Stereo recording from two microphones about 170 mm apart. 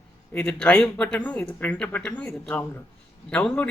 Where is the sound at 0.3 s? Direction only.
10° left (ahead or behind).